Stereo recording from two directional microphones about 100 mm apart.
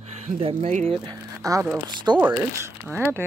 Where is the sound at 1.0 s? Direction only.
40° right (ahead or behind).